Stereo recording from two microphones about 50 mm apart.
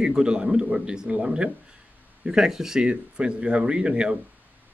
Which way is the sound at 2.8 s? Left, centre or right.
Right.